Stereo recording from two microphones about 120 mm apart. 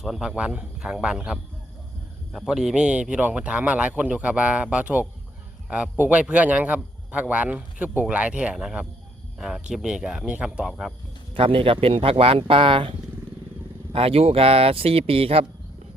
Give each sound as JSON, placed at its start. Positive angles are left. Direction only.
{"t": 0.0, "sound": "a man's voice", "side_deg": -5}
{"t": 11.3, "sound": "speech", "side_deg": -50}